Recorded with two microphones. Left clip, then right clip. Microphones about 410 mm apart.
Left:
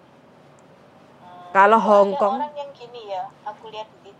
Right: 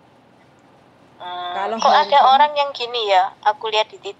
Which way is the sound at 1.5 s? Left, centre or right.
Left.